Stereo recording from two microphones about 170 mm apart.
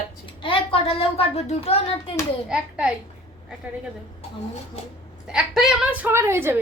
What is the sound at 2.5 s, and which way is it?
Speech, 5° right (ahead or behind).